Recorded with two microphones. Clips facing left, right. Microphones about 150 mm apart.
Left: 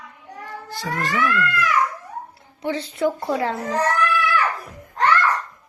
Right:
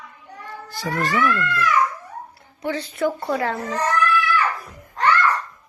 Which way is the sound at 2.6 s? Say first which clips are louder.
Left 1 dB; 25° left (ahead or behind).